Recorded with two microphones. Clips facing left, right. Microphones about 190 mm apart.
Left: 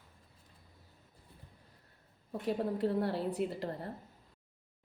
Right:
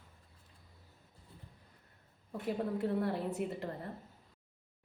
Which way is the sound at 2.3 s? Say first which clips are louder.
Left 2 dB; 30° left (ahead or behind).